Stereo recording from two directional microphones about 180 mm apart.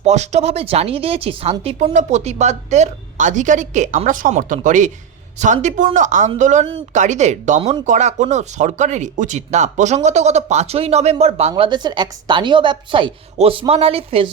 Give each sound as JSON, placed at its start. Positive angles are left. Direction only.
{"t": 0.0, "sound": "speech", "side_deg": -40}